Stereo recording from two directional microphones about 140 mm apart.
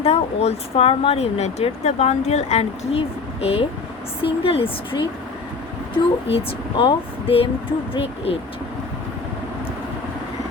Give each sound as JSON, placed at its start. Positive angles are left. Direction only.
{"t": 0.0, "sound": "speech", "side_deg": 50}
{"t": 6.3, "sound": "speech", "side_deg": 40}